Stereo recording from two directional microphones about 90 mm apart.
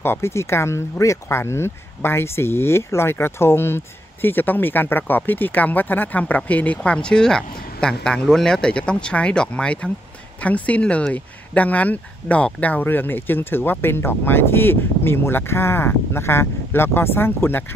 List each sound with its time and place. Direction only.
0.0 s speech: 25° left (ahead or behind)